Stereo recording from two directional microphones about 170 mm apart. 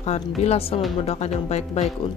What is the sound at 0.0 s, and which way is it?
Speech, 40° left (ahead or behind).